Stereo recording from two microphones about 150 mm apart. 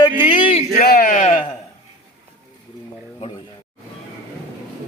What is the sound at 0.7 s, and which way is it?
Speech, 75° left (ahead or behind).